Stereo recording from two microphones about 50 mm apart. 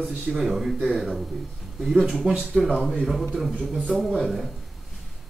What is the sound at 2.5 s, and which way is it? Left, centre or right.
Speech, centre.